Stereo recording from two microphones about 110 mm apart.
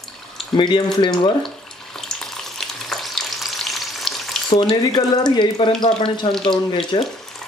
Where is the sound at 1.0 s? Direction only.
45° left (ahead or behind).